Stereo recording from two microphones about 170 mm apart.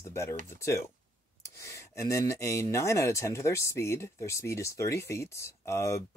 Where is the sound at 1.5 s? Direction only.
20° left (ahead or behind).